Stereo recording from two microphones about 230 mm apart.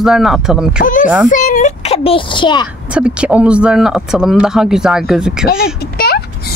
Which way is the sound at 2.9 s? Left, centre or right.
Centre.